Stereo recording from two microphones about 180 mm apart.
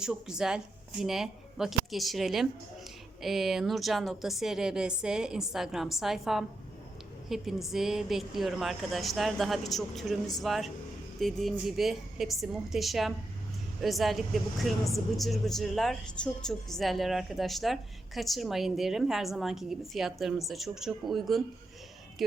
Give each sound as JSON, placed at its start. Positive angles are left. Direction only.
{"t": 0.0, "sound": "speech", "side_deg": -5}